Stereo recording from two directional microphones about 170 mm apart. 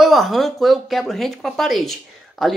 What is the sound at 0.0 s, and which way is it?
Speech, centre (ahead or behind).